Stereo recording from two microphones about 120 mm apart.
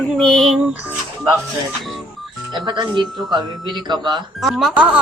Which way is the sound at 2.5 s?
40° right (ahead or behind).